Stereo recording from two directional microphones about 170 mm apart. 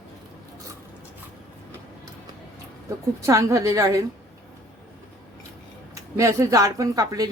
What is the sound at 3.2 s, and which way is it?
Speech, 20° right (ahead or behind).